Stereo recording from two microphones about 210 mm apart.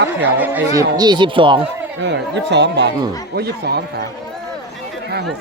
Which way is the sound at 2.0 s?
55° right (ahead or behind).